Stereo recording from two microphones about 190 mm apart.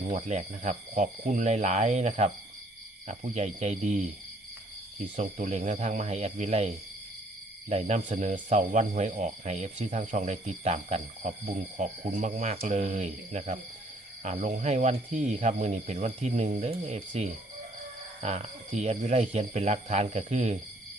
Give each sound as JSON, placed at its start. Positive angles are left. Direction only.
{"t": 0.1, "sound": "speech", "side_deg": -40}
{"t": 5.1, "sound": "speech", "side_deg": -40}